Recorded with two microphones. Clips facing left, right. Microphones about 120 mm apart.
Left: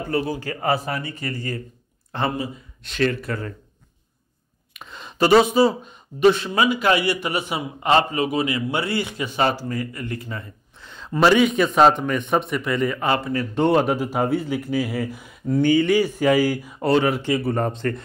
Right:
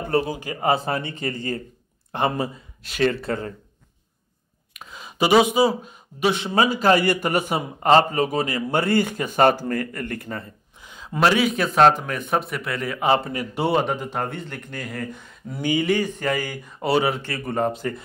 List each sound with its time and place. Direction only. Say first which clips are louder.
0.0 s speech: right 1 dB; 20° right (ahead or behind)
4.7 s speech: left 2 dB; 5° right (ahead or behind)
6.6 s a man's voice: right 2 dB; 40° right (ahead or behind); by 10.4 s 55° right (ahead or behind)
10.8 s a man's voice: left 2 dB; 10° right (ahead or behind)
13.0 s speech: right 1 dB; 20° right (ahead or behind)
13.7 s a man's voice: left 3 dB; centre (ahead or behind)
15.5 s speech: left 6 dB; 10° right (ahead or behind)
15.9 s a man's voice: left 4 dB; 10° left (ahead or behind)